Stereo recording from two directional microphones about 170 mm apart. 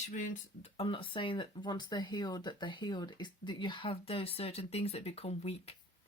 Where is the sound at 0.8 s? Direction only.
30° left (ahead or behind).